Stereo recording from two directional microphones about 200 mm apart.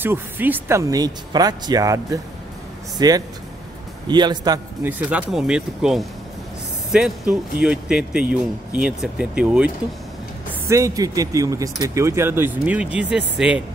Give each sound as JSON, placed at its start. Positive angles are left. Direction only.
{"t": 0.0, "sound": "a man's voice", "side_deg": -10}
{"t": 4.8, "sound": "speech", "side_deg": -5}
{"t": 10.7, "sound": "speech", "side_deg": -15}